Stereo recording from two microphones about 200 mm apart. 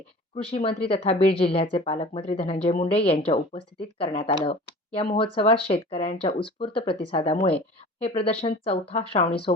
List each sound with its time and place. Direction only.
0.9 s a woman's voice: 30° left (ahead or behind)